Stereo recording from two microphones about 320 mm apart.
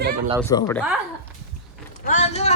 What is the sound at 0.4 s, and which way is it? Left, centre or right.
Speech, centre.